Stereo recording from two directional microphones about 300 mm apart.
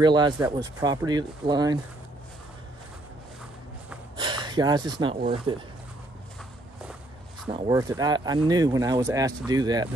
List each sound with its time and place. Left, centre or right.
0.0 s speech: centre
4.2 s speech: centre
7.5 s speech: centre